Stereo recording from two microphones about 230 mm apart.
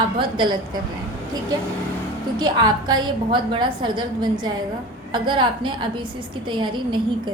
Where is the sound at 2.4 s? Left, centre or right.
Centre.